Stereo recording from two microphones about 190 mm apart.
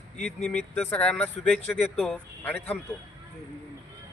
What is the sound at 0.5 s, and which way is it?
Speech, 35° left (ahead or behind).